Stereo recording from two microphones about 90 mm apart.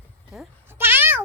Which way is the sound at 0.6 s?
25° right (ahead or behind).